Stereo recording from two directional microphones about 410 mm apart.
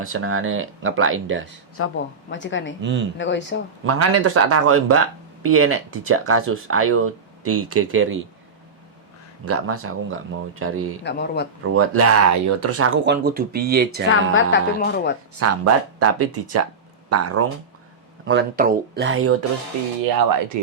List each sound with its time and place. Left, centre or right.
0.0 s speech: right
1.8 s a woman's voice: left
2.8 s speech: right
3.2 s a woman's voice: left
3.8 s speech: right
9.5 s speech: right
11.0 s a woman's voice: left
11.6 s speech: right
14.1 s a woman's voice: left
15.4 s speech: right
18.3 s speech: right